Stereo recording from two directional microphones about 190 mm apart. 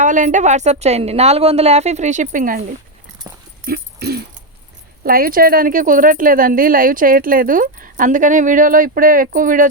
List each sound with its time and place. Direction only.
0.0 s a woman's voice: 40° right (ahead or behind)
3.7 s dog: 55° right (ahead or behind)
5.0 s speech: 50° right (ahead or behind)